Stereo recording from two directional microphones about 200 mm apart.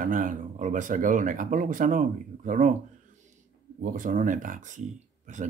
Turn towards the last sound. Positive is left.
turn(degrees=-40)  # may be behind; listen again after turning